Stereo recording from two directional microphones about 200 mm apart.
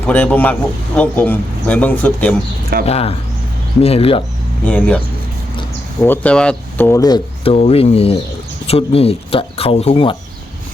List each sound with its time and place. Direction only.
0.1 s a man's voice: 10° left (ahead or behind)
2.8 s speech: 30° left (ahead or behind)
4.6 s a man's voice: 10° left (ahead or behind)
6.0 s speech: 10° left (ahead or behind)
7.5 s speech: 30° left (ahead or behind)